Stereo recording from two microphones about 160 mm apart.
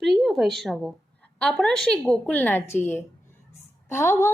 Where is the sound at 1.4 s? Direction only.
5° left (ahead or behind).